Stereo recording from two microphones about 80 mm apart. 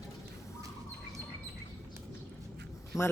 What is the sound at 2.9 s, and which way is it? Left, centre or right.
Speech, left.